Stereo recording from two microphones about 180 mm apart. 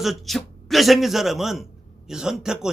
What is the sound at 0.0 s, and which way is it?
A man's voice, centre (ahead or behind).